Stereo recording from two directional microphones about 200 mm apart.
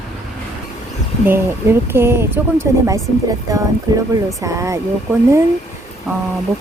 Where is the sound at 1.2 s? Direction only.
10° right (ahead or behind).